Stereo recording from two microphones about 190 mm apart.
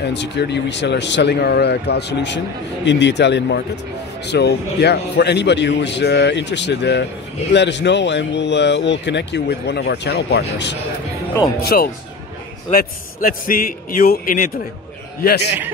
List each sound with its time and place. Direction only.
0.0 s speech: 65° left (ahead or behind)
11.6 s a man's voice: 55° left (ahead or behind)